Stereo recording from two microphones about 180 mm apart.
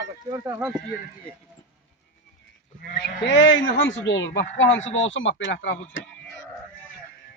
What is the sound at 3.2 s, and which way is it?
Speech, 90° left.